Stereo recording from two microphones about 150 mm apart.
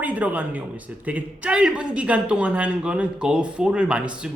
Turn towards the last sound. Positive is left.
turn(degrees=-5)  # may be behind; listen again after turning